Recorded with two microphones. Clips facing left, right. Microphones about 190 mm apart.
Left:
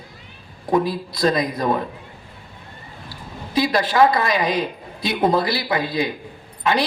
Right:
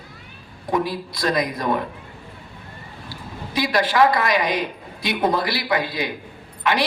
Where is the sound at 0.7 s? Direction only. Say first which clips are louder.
Left 3 dB; 25° left (ahead or behind).